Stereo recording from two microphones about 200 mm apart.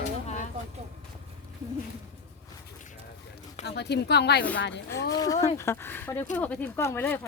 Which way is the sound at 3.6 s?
55° left (ahead or behind).